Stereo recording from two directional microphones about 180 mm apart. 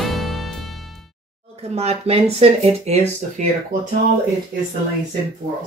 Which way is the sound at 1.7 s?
35° right (ahead or behind).